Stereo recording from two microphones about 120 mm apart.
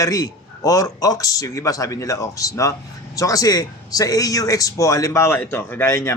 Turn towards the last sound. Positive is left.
turn(degrees=25)  # may be behind; listen again after turning